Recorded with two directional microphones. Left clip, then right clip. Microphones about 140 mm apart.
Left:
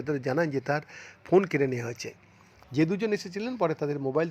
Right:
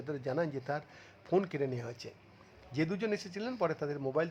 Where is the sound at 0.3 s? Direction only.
30° left (ahead or behind).